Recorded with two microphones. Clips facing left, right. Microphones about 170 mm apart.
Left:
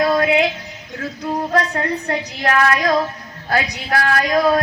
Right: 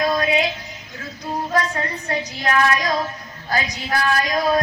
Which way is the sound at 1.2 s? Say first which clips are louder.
Left 3 dB; 65° left (ahead or behind).